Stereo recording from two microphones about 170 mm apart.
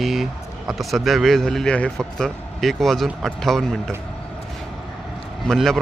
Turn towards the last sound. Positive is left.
turn(degrees=0)  # may be behind; listen again after turning